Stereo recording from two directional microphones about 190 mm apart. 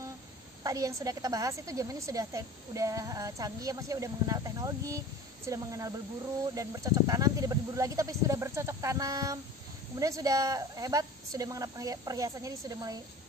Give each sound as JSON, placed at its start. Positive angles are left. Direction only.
{"t": 0.7, "sound": "a woman's voice", "side_deg": -15}